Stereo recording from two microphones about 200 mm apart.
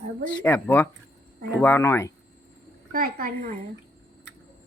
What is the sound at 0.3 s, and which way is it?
Speech, 10° left (ahead or behind).